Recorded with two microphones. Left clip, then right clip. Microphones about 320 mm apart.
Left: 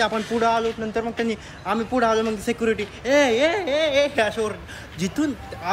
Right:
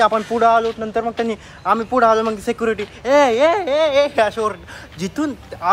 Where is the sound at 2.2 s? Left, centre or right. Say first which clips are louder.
Right 4 dB; centre.